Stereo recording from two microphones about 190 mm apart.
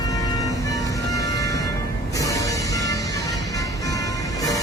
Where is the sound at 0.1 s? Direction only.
20° left (ahead or behind).